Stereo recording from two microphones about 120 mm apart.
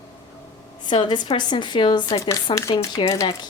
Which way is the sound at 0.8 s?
40° left (ahead or behind).